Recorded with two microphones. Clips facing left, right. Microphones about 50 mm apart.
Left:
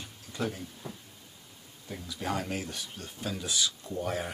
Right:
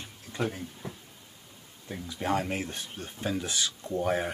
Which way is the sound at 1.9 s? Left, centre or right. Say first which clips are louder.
Right 4 dB; right.